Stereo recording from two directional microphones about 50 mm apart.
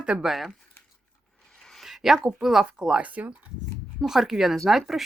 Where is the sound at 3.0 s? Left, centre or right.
Right.